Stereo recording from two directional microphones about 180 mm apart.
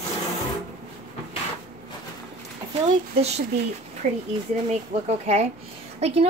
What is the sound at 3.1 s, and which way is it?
Speech, 35° right (ahead or behind).